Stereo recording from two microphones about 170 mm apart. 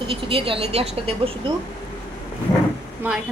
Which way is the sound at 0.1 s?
30° right (ahead or behind).